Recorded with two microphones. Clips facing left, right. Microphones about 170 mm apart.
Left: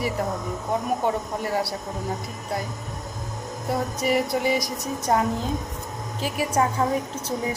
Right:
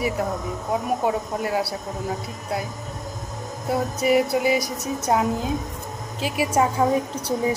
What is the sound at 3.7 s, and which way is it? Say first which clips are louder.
Speech: right 3 dB; centre (ahead or behind).